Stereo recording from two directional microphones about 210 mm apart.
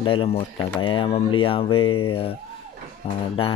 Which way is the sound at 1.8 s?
90° left.